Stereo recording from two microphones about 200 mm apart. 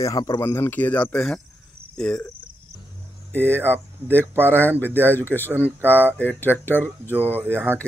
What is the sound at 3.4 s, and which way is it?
Speech, 10° right (ahead or behind).